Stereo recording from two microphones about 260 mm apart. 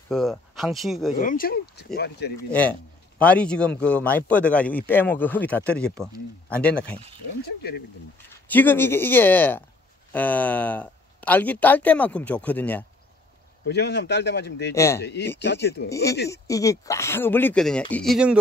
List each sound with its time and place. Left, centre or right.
0.1 s a man's voice: centre
1.2 s a man's voice: left
3.2 s a man's voice: centre
7.4 s a man's voice: left
8.5 s a man's voice: centre
13.7 s a man's voice: left
14.7 s speech: centre
15.0 s a man's voice: left
15.9 s a man's voice: centre